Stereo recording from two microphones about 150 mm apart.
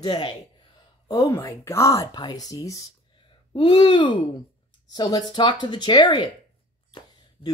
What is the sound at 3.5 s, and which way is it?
Speech, 35° left (ahead or behind).